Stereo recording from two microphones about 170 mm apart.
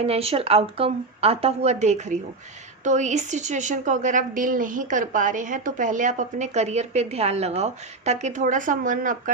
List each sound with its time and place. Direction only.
0.0 s a woman's voice: 35° right (ahead or behind); by 9.3 s 50° right (ahead or behind)